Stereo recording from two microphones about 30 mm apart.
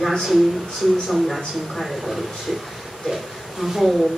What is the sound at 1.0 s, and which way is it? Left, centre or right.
Speech, centre.